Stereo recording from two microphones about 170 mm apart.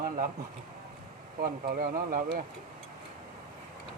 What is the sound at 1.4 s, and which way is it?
Speech, 60° right (ahead or behind).